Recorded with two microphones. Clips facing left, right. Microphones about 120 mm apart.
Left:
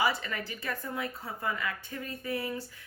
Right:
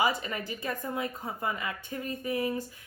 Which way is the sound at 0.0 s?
20° right (ahead or behind).